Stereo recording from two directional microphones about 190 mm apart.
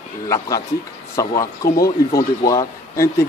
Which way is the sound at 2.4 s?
15° left (ahead or behind).